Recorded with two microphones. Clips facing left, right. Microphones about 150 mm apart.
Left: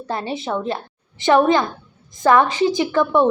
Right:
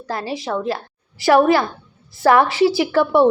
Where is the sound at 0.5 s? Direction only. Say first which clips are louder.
Right 1 dB; 15° left (ahead or behind).